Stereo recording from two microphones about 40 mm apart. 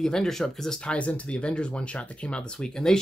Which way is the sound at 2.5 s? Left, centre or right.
Centre.